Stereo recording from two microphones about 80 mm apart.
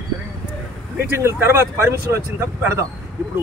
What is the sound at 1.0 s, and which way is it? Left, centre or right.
Speech, right.